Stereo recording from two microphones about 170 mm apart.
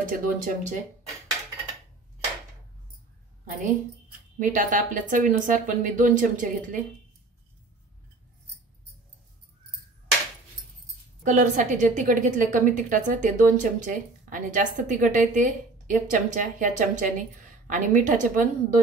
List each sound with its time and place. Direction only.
0.0 s a woman's voice: 50° right (ahead or behind)
4.4 s a woman's voice: 50° right (ahead or behind)
11.2 s a woman's voice: 50° right (ahead or behind)